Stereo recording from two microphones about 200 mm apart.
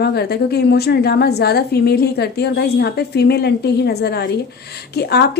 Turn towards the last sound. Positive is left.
turn(degrees=55)  # may be behind; listen again after turning